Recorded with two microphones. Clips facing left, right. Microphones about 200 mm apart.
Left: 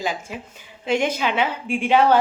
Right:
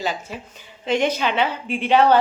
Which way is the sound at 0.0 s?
10° left (ahead or behind).